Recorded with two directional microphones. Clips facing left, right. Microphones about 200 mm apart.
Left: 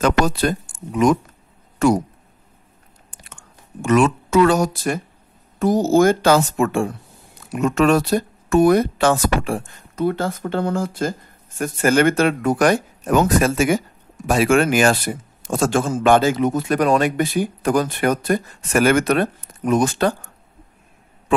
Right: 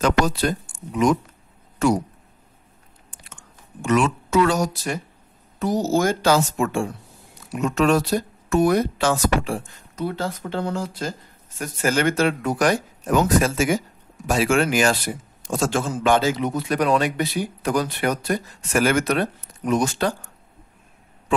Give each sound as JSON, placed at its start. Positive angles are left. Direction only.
{"t": 0.0, "sound": "speech", "side_deg": 55}
{"t": 3.8, "sound": "a woman's voice", "side_deg": 50}